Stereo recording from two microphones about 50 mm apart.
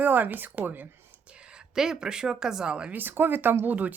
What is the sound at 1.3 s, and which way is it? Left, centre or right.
Speech, centre.